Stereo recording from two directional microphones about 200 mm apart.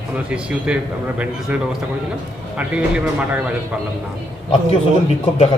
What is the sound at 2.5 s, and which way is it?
Speech, 5° right (ahead or behind).